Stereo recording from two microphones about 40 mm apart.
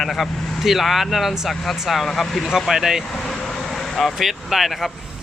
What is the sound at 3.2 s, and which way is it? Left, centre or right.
Vehicle, centre.